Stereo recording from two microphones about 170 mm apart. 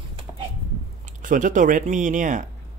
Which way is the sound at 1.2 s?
50° right (ahead or behind).